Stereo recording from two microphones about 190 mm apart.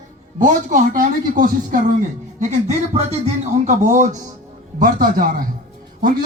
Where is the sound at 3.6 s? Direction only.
40° right (ahead or behind).